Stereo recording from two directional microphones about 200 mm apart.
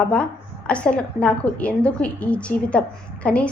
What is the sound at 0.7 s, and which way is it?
A woman's voice, 5° left (ahead or behind).